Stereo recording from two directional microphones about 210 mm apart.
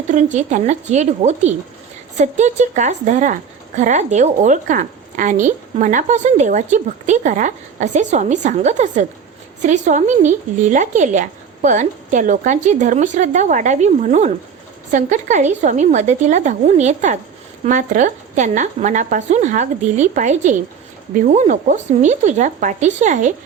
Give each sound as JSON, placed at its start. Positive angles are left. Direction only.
{"t": 0.1, "sound": "a woman's voice", "side_deg": -35}